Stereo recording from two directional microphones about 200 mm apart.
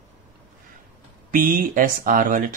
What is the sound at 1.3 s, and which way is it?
Speech, 45° right (ahead or behind).